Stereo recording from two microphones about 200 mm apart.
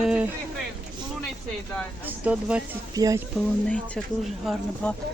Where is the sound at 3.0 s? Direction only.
15° right (ahead or behind).